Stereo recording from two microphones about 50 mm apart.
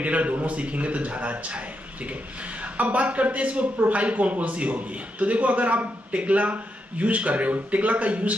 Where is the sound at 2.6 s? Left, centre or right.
Right.